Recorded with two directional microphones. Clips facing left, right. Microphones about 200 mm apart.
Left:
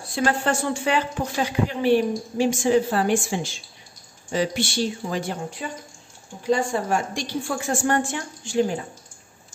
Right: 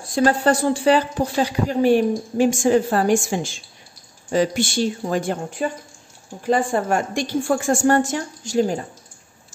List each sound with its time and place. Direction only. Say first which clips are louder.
0.1 s speech: right 5 dB; 40° right (ahead or behind)